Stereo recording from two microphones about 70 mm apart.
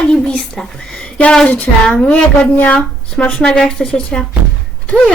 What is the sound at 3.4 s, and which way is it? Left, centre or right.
A woman's voice, centre.